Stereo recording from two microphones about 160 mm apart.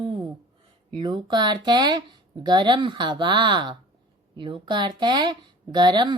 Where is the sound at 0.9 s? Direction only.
25° right (ahead or behind).